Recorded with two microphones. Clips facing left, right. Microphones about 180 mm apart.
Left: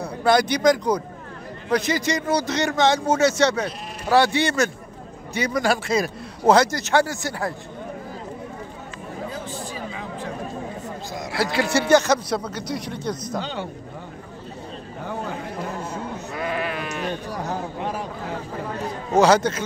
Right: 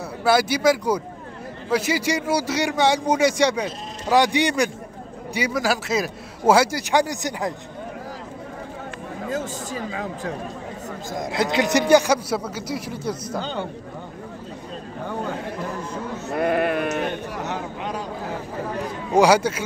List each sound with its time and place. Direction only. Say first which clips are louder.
0.0 s a man's voice: left 1 dB; 5° right (ahead or behind)
9.3 s speech: right 4 dB; 45° right (ahead or behind)
11.3 s a man's voice: right 1 dB; 20° right (ahead or behind)
16.3 s sheep: right 8 dB; 55° right (ahead or behind)
17.5 s a sound: left 3 dB; 30° left (ahead or behind)
19.1 s a man's voice: even; 10° right (ahead or behind)